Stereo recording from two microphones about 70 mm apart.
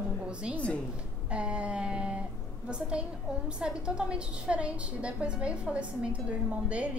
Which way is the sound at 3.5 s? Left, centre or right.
Centre.